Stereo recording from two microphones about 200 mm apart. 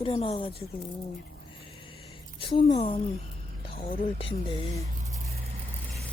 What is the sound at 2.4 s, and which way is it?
Speech, 25° left (ahead or behind).